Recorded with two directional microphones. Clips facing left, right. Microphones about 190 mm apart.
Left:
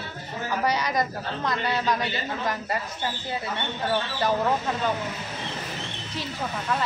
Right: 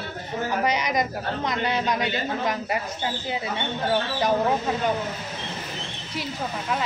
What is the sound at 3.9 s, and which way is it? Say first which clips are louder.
Speech: right 2 dB; 15° right (ahead or behind).